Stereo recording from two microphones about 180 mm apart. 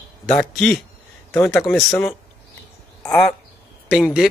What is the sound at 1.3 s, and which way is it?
Speech, 15° left (ahead or behind).